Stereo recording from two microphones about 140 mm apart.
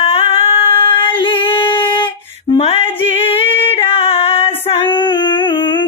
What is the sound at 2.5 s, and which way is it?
Female singing, 45° left (ahead or behind).